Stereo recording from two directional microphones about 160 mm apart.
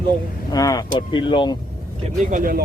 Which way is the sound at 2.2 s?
55° right (ahead or behind).